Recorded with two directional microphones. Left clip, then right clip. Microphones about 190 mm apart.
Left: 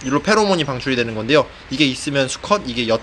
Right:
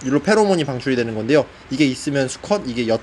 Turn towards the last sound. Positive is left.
turn(degrees=-30)  # may be behind; listen again after turning